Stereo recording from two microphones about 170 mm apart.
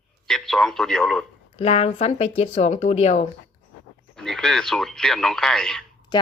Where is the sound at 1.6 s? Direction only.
35° left (ahead or behind).